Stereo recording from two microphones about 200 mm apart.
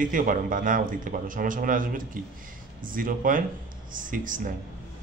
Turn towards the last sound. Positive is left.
turn(degrees=-40)  # may be behind; listen again after turning